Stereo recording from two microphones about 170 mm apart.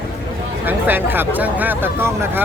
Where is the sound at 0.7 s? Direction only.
10° right (ahead or behind).